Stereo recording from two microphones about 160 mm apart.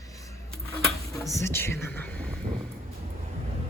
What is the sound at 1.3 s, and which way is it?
Speech, 15° left (ahead or behind).